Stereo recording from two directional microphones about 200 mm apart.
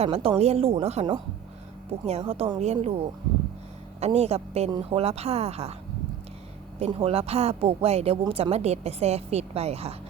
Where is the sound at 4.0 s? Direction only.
30° right (ahead or behind).